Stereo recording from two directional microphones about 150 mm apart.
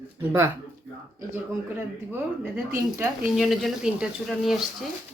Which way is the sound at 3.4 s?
Centre (ahead or behind).